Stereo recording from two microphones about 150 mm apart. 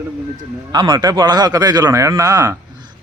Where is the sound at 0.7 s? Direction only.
30° right (ahead or behind).